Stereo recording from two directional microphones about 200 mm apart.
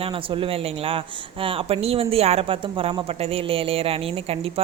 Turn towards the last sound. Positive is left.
turn(degrees=-30)  # may be behind; listen again after turning